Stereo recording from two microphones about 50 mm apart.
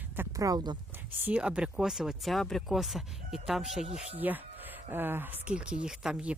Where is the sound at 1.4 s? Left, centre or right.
Centre.